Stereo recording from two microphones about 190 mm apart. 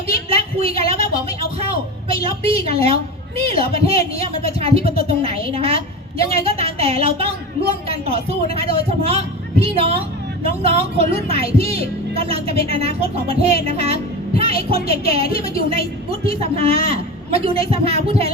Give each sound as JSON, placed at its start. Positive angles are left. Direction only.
{"t": 0.3, "sound": "a woman's voice", "side_deg": -30}
{"t": 2.2, "sound": "speech", "side_deg": -30}